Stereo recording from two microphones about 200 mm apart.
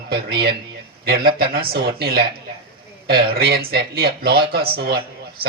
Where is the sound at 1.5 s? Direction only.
50° right (ahead or behind).